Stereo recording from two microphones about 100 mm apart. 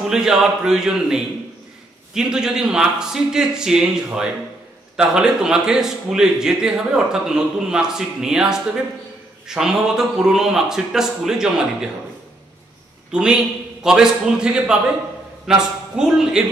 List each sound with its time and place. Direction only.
0.1 s a man's voice: 5° right (ahead or behind)
13.1 s a man's voice: 5° right (ahead or behind)